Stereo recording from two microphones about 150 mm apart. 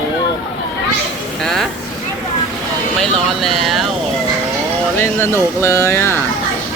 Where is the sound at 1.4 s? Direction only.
Centre (ahead or behind).